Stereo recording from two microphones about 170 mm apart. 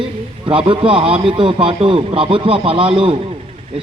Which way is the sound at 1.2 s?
30° right (ahead or behind).